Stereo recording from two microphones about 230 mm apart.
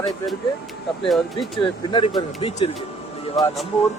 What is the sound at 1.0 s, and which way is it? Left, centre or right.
Speech, centre.